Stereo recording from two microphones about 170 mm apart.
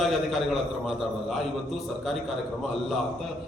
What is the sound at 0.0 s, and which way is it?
A man's voice, centre (ahead or behind).